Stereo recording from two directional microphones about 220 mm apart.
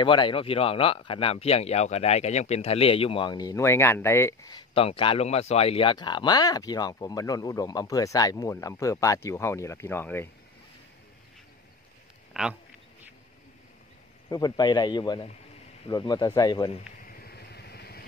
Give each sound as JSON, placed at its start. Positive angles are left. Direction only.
{"t": 0.0, "sound": "speech", "side_deg": 20}
{"t": 12.4, "sound": "speech", "side_deg": 0}
{"t": 14.3, "sound": "speech", "side_deg": 20}
{"t": 17.0, "sound": "vehicle", "side_deg": 40}